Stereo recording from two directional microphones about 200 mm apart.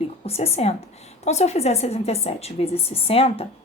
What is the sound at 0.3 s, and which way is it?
A woman's voice, 30° left (ahead or behind).